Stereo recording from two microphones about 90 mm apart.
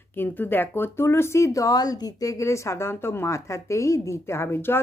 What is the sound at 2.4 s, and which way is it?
Speech, 30° left (ahead or behind).